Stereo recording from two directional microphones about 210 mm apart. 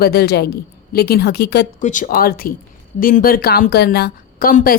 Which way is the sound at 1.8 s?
35° left (ahead or behind).